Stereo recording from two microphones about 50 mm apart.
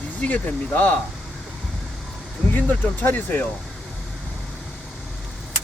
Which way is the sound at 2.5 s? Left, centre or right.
Left.